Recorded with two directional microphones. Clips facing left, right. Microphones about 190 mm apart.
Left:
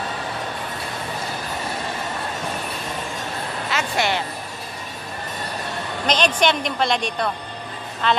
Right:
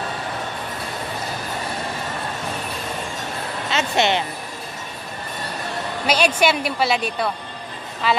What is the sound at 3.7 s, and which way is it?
Speech, 25° right (ahead or behind).